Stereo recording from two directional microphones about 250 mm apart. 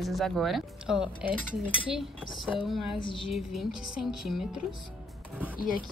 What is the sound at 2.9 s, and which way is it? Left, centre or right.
Music, centre.